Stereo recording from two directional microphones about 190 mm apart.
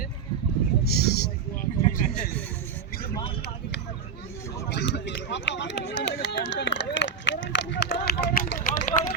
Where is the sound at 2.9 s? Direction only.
50° left (ahead or behind).